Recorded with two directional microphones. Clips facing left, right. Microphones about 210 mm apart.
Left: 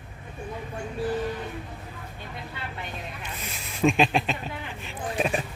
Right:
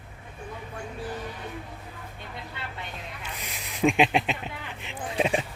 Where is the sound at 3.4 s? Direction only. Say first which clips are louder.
Left 1 dB; 15° right (ahead or behind).